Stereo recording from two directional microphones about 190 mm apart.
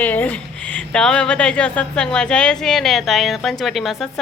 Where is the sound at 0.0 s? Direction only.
10° left (ahead or behind).